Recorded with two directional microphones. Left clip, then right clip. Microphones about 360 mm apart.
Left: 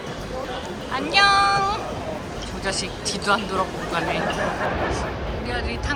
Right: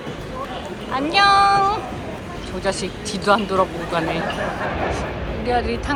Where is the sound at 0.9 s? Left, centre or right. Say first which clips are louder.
Right 2 dB; centre.